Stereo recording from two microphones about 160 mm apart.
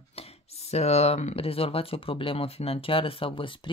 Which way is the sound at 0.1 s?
40° left (ahead or behind).